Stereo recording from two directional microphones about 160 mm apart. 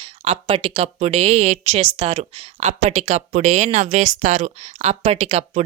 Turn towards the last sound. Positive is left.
turn(degrees=-40)  # may be behind; listen again after turning